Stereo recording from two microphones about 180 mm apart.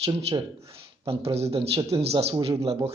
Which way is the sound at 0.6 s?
30° right (ahead or behind).